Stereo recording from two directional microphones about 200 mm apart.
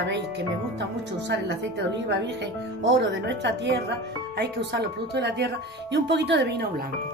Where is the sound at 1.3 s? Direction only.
55° right (ahead or behind).